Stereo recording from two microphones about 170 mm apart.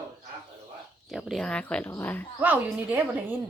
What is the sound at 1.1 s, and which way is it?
Speech, centre (ahead or behind).